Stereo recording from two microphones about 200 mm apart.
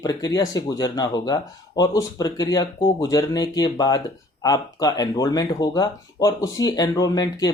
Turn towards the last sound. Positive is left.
turn(degrees=20)  # may be behind; listen again after turning